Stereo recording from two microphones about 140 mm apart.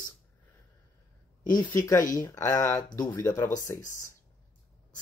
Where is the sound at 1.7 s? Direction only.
20° left (ahead or behind).